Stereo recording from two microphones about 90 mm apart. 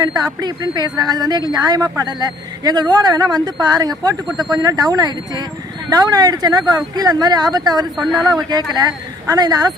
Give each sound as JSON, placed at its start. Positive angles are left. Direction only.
{"t": 0.0, "sound": "speech", "side_deg": -45}